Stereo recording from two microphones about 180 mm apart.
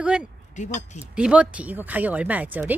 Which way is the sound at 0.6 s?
40° left (ahead or behind).